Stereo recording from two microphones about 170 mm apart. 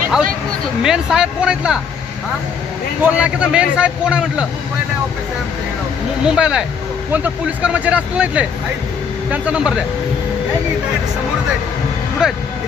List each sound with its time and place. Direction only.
0.8 s speech: 5° right (ahead or behind)
3.0 s a man's voice: 5° right (ahead or behind)
6.2 s a man's voice: 5° right (ahead or behind)
12.2 s speech: 5° right (ahead or behind)